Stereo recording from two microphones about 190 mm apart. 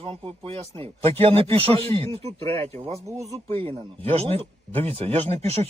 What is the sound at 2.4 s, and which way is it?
Speech, 15° left (ahead or behind).